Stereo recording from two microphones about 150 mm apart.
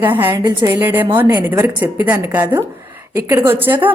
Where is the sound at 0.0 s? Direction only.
15° right (ahead or behind).